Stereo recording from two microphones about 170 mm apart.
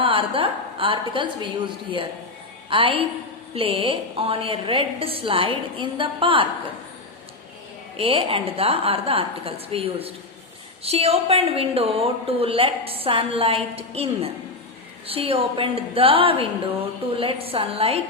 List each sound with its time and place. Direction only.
0.0 s a woman's voice: 30° right (ahead or behind)
7.9 s a woman's voice: 35° right (ahead or behind)